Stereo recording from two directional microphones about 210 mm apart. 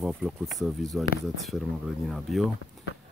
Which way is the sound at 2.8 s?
Centre (ahead or behind).